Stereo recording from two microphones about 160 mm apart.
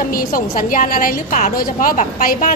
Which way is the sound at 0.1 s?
65° left (ahead or behind).